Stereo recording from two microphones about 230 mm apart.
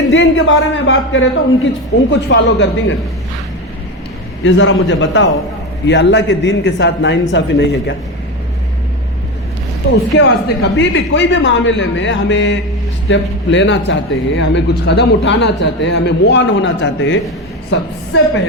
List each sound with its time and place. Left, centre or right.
0.1 s a man's voice: left
4.4 s a man's voice: left
10.2 s a man's voice: left